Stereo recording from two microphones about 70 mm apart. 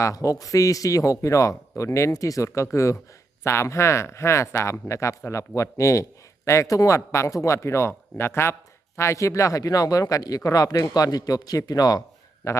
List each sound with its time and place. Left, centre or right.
0.0 s speech: left
12.4 s speech: left